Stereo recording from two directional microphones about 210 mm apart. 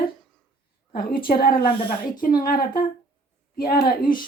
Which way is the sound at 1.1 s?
45° left (ahead or behind).